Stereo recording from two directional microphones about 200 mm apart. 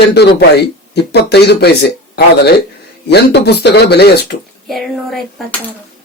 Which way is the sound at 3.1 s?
55° left (ahead or behind).